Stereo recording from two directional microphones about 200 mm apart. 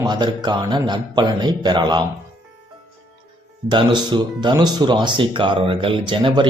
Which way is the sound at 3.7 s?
20° right (ahead or behind).